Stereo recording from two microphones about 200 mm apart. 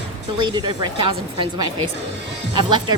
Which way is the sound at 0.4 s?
20° right (ahead or behind).